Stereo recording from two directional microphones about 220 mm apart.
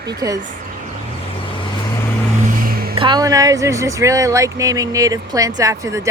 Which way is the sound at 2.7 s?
45° right (ahead or behind).